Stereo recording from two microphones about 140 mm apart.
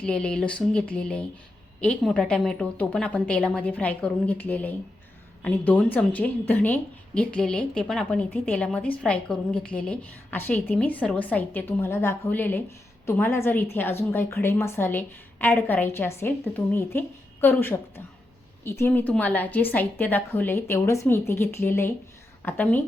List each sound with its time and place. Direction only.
0.0 s a woman's voice: 5° left (ahead or behind)